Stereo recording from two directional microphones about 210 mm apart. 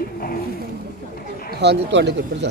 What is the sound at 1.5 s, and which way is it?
Speech, 55° right (ahead or behind).